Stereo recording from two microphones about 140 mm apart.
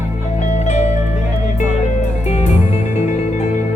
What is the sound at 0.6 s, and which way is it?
Music, 55° left (ahead or behind).